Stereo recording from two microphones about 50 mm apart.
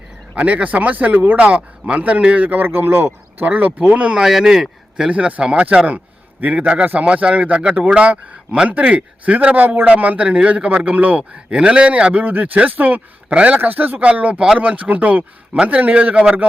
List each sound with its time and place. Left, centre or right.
0.3 s speech: right
1.4 s speech: right
2.6 s speech: right
3.4 s speech: right
4.1 s speech: centre; by 11.2 s right
11.2 s speech: centre
13.6 s speech: right
14.1 s speech: right